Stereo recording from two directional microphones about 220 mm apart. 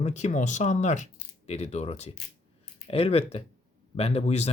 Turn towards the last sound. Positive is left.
turn(degrees=30)  # may be behind; listen again after turning